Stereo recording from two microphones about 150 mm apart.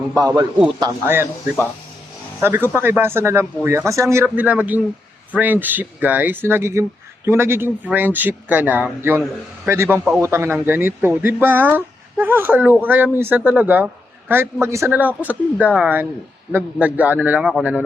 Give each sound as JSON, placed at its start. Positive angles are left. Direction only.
{"t": 0.1, "sound": "a man's voice", "side_deg": -25}
{"t": 1.0, "sound": "a man's voice", "side_deg": -15}
{"t": 2.4, "sound": "a man's voice", "side_deg": -15}